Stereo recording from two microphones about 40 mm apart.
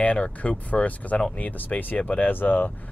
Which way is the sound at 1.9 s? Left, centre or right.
Left.